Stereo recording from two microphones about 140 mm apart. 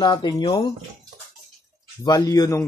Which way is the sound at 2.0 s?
30° left (ahead or behind).